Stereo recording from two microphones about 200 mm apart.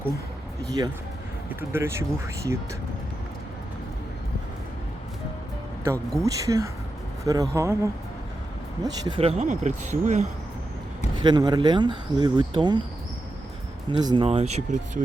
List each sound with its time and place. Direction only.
1.7 s speech: 15° right (ahead or behind)
5.8 s speech: 15° right (ahead or behind)
8.8 s speech: 25° right (ahead or behind)
11.2 s speech: 20° right (ahead or behind)
13.9 s speech: 20° right (ahead or behind)
14.3 s speech: 30° right (ahead or behind)